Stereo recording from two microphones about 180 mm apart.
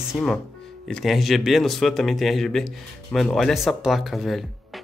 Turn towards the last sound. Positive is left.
turn(degrees=0)  # may be behind; listen again after turning